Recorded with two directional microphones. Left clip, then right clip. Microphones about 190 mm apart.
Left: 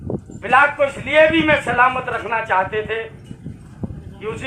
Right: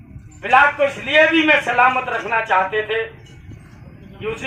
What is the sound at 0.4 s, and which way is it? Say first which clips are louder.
Speech: right 1 dB; 10° right (ahead or behind).